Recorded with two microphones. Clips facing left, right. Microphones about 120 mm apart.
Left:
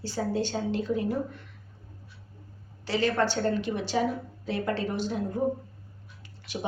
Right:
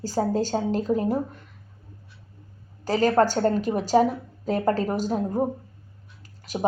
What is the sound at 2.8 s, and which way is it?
A woman's voice, 45° right (ahead or behind).